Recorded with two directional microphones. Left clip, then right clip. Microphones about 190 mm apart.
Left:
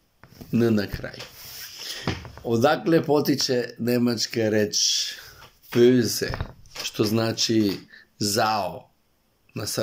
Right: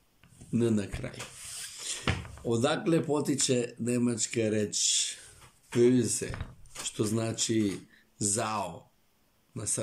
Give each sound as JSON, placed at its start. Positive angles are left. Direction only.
{"t": 0.5, "sound": "speech", "side_deg": -15}
{"t": 1.8, "sound": "a sound", "side_deg": -15}
{"t": 2.4, "sound": "speech", "side_deg": -15}